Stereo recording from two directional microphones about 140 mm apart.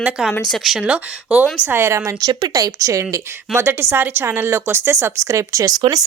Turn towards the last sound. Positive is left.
turn(degrees=-25)  # may be behind; listen again after turning